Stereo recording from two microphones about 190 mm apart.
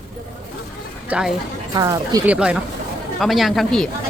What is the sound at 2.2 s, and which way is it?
A man's voice, 5° right (ahead or behind).